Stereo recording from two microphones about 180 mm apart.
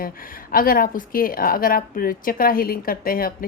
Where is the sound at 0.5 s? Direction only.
50° left (ahead or behind).